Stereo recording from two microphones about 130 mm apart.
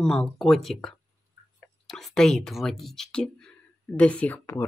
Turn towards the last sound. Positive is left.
turn(degrees=15)  # may be behind; listen again after turning